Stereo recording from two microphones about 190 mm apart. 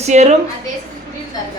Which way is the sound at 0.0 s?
35° right (ahead or behind).